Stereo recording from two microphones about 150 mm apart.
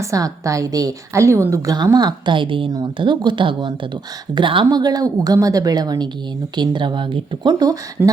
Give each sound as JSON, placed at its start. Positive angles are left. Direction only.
{"t": 0.0, "sound": "a woman's voice", "side_deg": -20}